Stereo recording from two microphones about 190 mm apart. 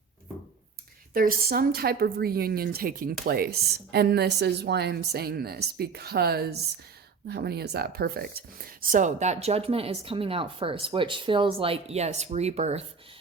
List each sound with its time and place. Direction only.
1.1 s a woman's voice: 50° right (ahead or behind); by 12.8 s 35° right (ahead or behind)